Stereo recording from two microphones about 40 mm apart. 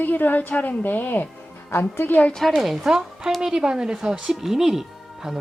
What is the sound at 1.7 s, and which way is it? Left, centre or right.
Speech, left.